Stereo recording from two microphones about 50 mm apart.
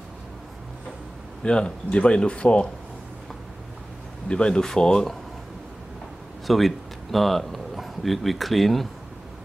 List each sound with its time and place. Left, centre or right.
1.4 s speech: centre
4.3 s speech: centre
6.4 s speech: centre